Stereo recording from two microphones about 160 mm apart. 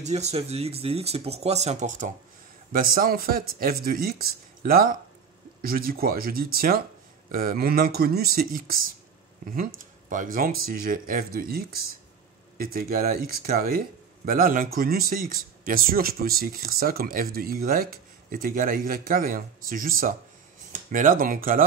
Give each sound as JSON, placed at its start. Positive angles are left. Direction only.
{"t": 0.0, "sound": "speech", "side_deg": -45}
{"t": 2.7, "sound": "speech", "side_deg": -60}